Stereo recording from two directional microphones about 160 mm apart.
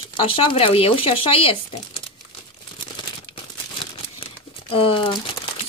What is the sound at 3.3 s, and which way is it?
Crumpling, 35° left (ahead or behind).